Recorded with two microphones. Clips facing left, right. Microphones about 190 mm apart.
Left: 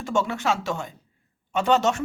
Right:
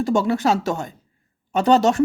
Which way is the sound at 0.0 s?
35° right (ahead or behind).